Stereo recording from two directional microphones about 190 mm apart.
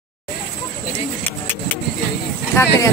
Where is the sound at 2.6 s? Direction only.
15° left (ahead or behind).